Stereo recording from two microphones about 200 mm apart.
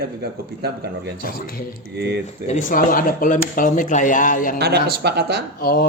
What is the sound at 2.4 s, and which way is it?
Speech, 40° left (ahead or behind).